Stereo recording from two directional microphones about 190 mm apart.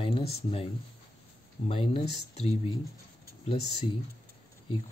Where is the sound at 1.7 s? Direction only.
30° left (ahead or behind).